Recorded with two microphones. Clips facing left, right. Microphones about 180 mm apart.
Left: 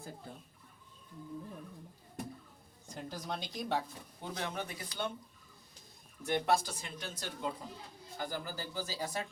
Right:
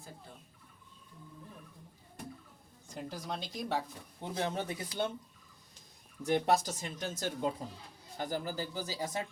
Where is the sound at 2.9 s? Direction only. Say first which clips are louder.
Right 1 dB; 5° right (ahead or behind).